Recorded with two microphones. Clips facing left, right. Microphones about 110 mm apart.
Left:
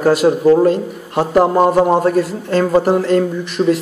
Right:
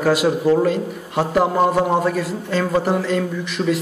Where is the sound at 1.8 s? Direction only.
40° left (ahead or behind).